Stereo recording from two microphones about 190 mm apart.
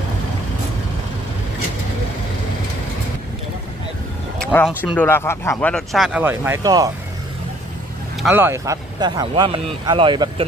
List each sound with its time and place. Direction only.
4.4 s speech: 5° left (ahead or behind); by 6.9 s 20° right (ahead or behind)
8.2 s speech: 10° right (ahead or behind)